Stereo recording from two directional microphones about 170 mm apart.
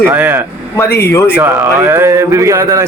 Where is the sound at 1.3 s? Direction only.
10° right (ahead or behind).